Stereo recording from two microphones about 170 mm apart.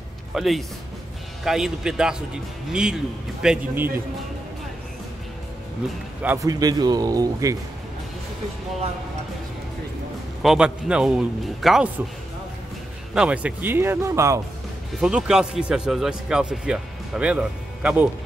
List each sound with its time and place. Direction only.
0.3 s speech: centre (ahead or behind)
6.2 s speech: 20° right (ahead or behind)
10.4 s speech: 5° right (ahead or behind)
13.1 s speech: 5° right (ahead or behind)
15.0 s speech: 5° right (ahead or behind)